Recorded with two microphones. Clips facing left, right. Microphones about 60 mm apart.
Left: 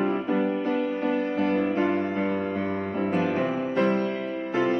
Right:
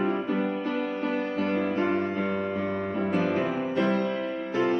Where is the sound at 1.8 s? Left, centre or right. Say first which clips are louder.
Left 1 dB; centre.